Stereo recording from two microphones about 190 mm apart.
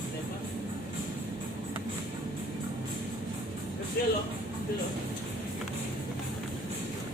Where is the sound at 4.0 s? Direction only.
55° left (ahead or behind).